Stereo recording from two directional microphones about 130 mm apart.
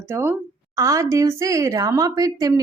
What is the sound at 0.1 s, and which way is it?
Speech, 15° right (ahead or behind).